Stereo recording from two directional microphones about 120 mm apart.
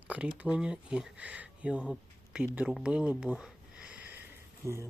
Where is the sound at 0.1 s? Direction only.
10° right (ahead or behind).